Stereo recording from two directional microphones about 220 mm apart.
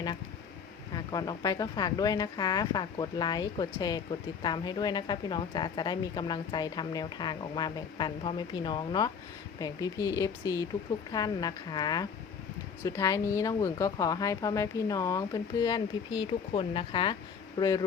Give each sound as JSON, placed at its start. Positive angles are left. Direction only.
{"t": 0.9, "sound": "a woman's voice", "side_deg": 15}